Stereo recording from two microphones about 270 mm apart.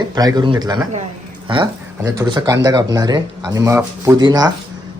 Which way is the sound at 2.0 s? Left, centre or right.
Centre.